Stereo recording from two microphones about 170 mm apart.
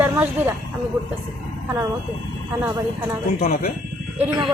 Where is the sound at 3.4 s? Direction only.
60° left (ahead or behind).